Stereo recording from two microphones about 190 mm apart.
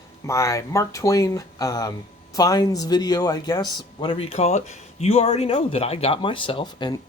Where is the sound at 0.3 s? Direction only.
15° left (ahead or behind).